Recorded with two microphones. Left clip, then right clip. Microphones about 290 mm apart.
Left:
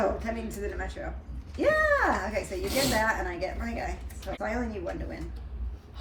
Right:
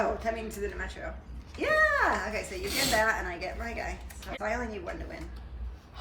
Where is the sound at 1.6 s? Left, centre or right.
Centre.